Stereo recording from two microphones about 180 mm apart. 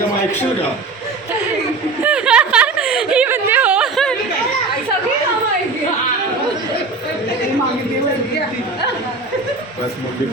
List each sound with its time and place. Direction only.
2.0 s snicker: 5° right (ahead or behind)